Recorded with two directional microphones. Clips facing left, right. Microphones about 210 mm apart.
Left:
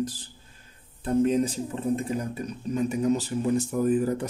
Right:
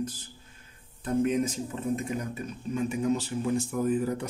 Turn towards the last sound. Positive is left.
turn(degrees=45)  # may be behind; listen again after turning